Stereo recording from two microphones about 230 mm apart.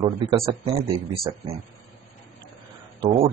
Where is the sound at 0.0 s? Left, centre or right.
Centre.